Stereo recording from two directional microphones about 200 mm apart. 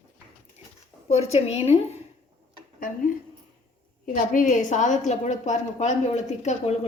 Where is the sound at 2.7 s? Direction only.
45° left (ahead or behind).